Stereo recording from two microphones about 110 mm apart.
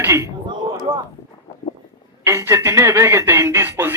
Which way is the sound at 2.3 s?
25° right (ahead or behind).